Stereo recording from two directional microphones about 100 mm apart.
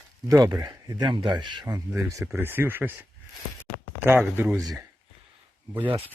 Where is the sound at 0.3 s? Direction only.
35° right (ahead or behind).